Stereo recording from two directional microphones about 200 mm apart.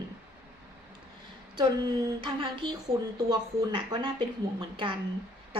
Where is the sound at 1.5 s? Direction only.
25° right (ahead or behind).